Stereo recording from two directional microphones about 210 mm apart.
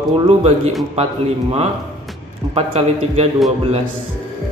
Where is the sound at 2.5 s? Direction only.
30° right (ahead or behind).